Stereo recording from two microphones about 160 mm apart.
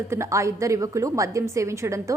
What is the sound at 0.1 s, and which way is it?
A woman's voice, 15° right (ahead or behind).